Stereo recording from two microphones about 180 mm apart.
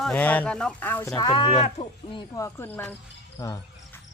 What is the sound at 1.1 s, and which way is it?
A man's voice, 30° left (ahead or behind).